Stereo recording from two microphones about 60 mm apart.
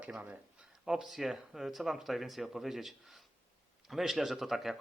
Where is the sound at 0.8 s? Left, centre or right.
Centre.